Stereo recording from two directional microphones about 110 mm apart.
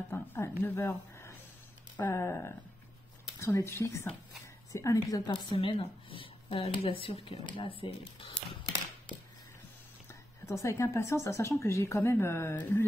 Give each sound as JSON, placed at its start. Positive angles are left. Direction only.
{"t": 0.1, "sound": "a woman's voice", "side_deg": 20}
{"t": 5.3, "sound": "speech", "side_deg": 50}
{"t": 10.4, "sound": "speech", "side_deg": 25}